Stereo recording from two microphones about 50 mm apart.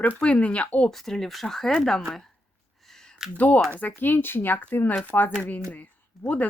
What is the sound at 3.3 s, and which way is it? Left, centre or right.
Speech, left.